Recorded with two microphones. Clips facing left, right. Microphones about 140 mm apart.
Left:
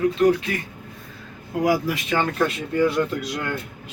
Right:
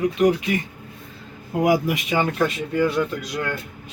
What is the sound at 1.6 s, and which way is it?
Speech, 20° right (ahead or behind).